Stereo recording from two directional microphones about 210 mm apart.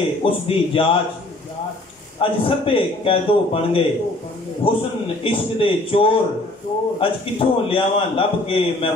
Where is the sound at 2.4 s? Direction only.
25° left (ahead or behind).